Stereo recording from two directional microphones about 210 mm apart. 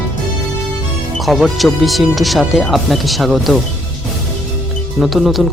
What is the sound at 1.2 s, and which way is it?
Speech, centre (ahead or behind).